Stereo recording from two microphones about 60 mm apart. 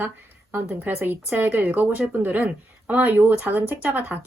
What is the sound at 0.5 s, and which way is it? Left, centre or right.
Speech, right.